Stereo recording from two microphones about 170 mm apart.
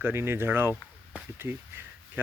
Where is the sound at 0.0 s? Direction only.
15° right (ahead or behind).